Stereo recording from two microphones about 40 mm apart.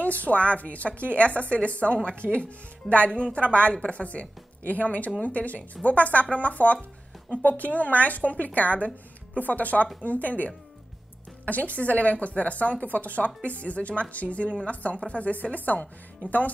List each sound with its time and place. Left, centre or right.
0.0 s speech: left